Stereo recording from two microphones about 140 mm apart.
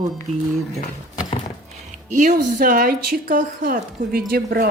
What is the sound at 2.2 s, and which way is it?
A woman's voice, 70° right (ahead or behind).